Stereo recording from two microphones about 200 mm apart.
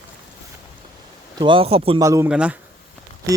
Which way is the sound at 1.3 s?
25° right (ahead or behind).